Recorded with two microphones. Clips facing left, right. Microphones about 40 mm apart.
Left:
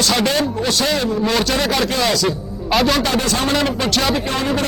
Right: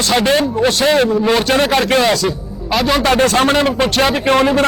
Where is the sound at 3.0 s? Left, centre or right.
Right.